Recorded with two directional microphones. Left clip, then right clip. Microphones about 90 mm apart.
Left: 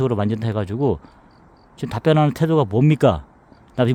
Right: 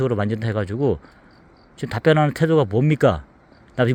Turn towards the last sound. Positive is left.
turn(degrees=25)  # may be behind; listen again after turning